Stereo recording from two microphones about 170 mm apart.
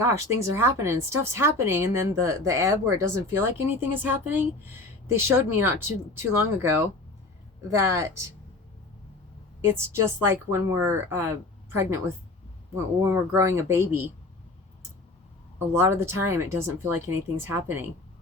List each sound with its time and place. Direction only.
0.0 s speech: 15° right (ahead or behind)
9.6 s speech: 15° right (ahead or behind)
15.5 s speech: 15° right (ahead or behind)